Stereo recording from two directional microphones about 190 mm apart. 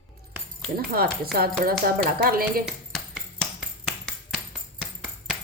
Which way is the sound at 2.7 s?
Centre (ahead or behind).